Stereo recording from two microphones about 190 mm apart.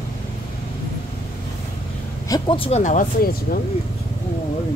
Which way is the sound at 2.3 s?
25° left (ahead or behind).